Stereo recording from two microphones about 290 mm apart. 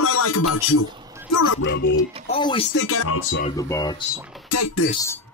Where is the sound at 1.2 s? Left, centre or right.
Left.